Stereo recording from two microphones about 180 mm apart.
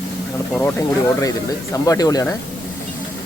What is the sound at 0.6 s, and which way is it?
Speech, 15° left (ahead or behind).